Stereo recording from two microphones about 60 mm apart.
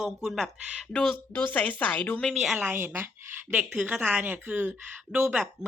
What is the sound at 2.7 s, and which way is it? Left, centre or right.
Speech, right.